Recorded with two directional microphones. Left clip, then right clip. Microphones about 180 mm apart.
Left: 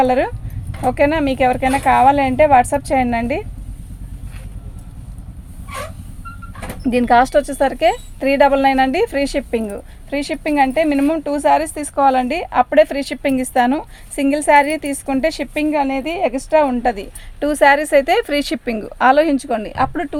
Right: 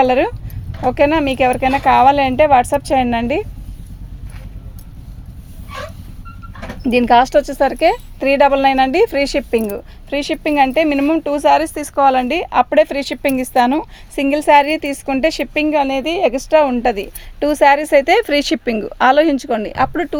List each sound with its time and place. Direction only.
0.0 s a woman's voice: 40° right (ahead or behind)
6.8 s a woman's voice: 35° right (ahead or behind)